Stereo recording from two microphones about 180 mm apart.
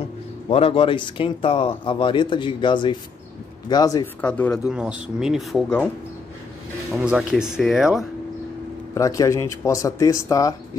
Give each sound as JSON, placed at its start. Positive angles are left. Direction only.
{"t": 0.5, "sound": "speech", "side_deg": 30}
{"t": 4.2, "sound": "speech", "side_deg": 5}
{"t": 6.9, "sound": "speech", "side_deg": -10}
{"t": 8.9, "sound": "speech", "side_deg": 15}